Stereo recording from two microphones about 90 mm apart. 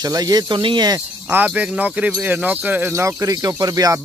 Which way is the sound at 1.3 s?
15° right (ahead or behind).